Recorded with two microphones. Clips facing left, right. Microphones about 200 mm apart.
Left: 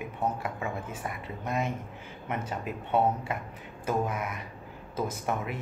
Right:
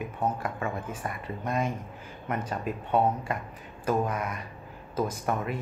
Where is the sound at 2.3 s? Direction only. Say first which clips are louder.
Right 2 dB; 10° left (ahead or behind).